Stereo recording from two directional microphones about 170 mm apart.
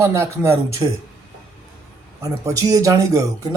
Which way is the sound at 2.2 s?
20° right (ahead or behind).